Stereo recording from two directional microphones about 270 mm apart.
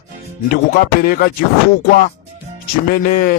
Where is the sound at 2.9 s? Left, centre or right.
Left.